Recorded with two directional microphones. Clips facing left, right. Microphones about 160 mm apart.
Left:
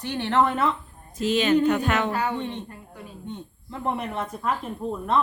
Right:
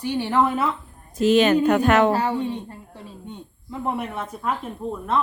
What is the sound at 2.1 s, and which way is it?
Speech, 30° right (ahead or behind).